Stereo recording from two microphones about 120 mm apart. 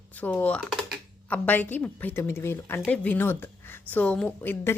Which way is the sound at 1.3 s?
15° left (ahead or behind).